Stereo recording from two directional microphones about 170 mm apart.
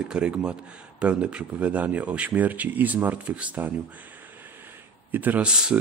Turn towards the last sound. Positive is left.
turn(degrees=-5)  # may be behind; listen again after turning